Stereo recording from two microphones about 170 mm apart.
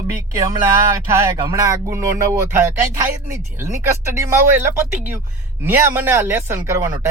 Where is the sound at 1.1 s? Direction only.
15° right (ahead or behind).